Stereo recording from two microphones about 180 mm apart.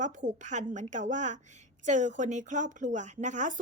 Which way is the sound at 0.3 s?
40° right (ahead or behind).